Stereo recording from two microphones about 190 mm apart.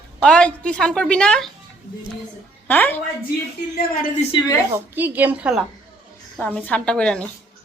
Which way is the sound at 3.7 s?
50° left (ahead or behind).